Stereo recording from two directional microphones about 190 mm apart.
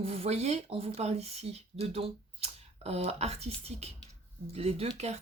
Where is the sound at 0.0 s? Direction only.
35° right (ahead or behind).